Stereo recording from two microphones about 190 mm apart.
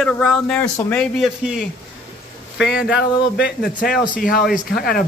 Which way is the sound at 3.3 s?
55° left (ahead or behind).